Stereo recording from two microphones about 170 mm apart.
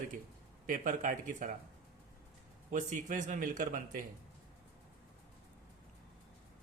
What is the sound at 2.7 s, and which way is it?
Speech, 45° right (ahead or behind).